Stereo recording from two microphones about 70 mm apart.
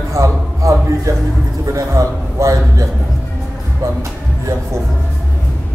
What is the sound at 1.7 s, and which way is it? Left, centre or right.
A man's voice, right.